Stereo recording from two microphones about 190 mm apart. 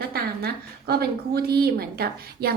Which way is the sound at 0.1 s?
55° right (ahead or behind).